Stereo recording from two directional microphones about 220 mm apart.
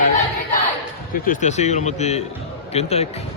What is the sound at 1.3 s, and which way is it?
Speech, 30° left (ahead or behind).